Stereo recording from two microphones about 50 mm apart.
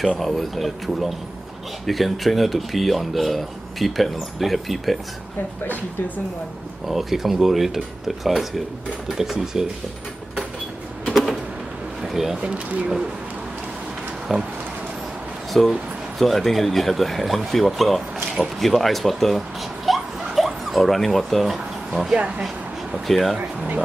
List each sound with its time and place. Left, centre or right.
0.2 s speech: centre
6.9 s speech: centre
12.0 s a sound: centre
12.4 s speech: centre
14.3 s speech: centre
15.5 s speech: centre
19.9 s a sound: centre
20.3 s speech: centre